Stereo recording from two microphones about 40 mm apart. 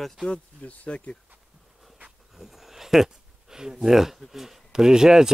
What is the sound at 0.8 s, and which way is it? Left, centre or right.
Speech, left.